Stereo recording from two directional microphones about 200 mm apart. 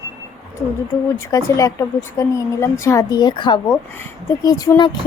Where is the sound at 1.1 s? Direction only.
15° left (ahead or behind).